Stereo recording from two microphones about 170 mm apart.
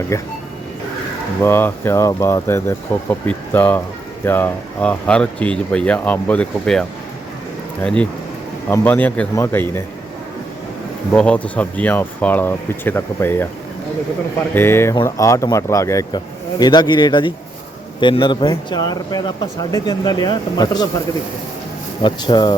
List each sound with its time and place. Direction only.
0.1 s speech: 15° left (ahead or behind)
1.4 s speech: 15° left (ahead or behind)
8.7 s speech: 10° left (ahead or behind)
11.1 s speech: 5° left (ahead or behind)
14.5 s speech: 15° left (ahead or behind)
22.0 s speech: 25° left (ahead or behind)